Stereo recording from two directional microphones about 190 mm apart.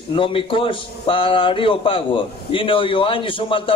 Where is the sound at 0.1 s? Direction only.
25° left (ahead or behind).